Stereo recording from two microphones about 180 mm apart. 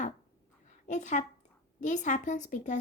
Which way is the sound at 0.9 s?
40° left (ahead or behind).